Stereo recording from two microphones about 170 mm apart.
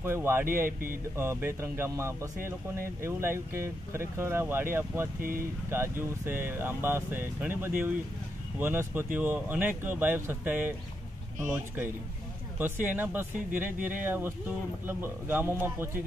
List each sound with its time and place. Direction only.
0.0 s speech: 15° right (ahead or behind)
0.7 s speech: 55° right (ahead or behind)
1.1 s speech: 15° right (ahead or behind)
5.2 s speech: 55° right (ahead or behind)
5.7 s speech: 15° right (ahead or behind)